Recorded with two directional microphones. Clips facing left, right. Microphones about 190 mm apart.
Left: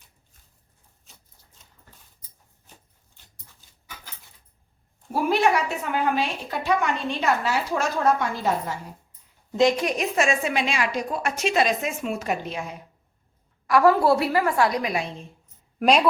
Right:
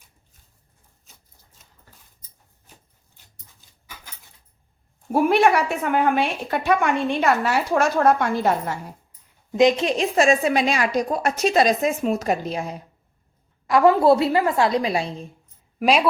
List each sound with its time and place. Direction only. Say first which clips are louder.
5.1 s a woman's voice: right 4 dB; 55° right (ahead or behind)
9.5 s a woman's voice: right 3 dB; 20° right (ahead or behind); by 12.7 s 35° right (ahead or behind)
13.7 s a woman's voice: right 3 dB; 20° right (ahead or behind)
15.8 s a woman's voice: even; centre (ahead or behind)